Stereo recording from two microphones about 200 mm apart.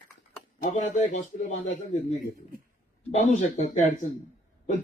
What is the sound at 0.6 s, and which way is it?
Speech, 40° left (ahead or behind).